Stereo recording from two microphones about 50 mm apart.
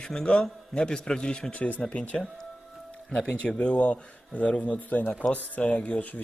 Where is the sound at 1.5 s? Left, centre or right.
Left.